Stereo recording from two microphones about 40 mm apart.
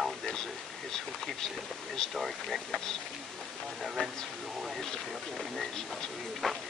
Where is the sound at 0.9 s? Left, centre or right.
Centre.